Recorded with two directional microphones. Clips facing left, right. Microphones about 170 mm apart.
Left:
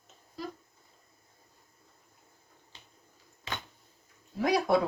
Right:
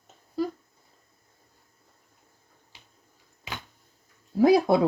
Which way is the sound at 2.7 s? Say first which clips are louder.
Even; 10° right (ahead or behind).